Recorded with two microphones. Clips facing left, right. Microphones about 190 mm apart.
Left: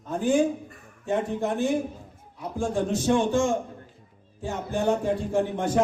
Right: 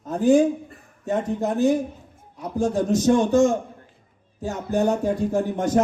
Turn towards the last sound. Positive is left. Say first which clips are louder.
# right 2 dB
turn(degrees=-40)  # may be behind; listen again after turning